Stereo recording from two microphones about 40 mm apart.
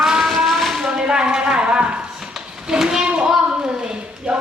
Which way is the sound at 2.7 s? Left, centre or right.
Centre.